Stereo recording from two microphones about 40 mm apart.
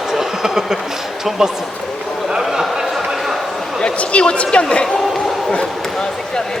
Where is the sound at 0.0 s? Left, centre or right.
Centre.